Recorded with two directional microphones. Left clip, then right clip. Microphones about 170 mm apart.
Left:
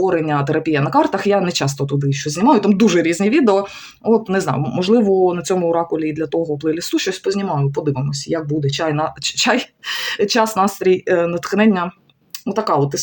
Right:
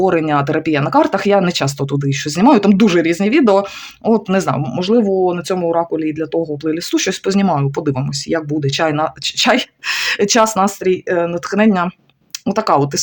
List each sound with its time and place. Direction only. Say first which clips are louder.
0.0 s speech: right 3 dB; 35° right (ahead or behind)
2.7 s speech: right 2 dB; 25° right (ahead or behind)
7.0 s speech: right 3 dB; 45° right (ahead or behind)
8.9 s speech: right 2 dB; 30° right (ahead or behind)
12.5 s speech: right 3 dB; 40° right (ahead or behind)